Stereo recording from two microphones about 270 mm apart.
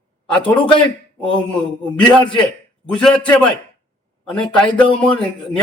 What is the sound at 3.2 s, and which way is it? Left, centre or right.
A man's voice, centre.